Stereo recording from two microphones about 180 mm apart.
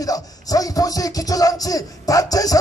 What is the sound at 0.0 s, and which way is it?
Music, 20° left (ahead or behind).